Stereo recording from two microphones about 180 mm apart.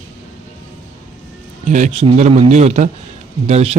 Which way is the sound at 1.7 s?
40° right (ahead or behind).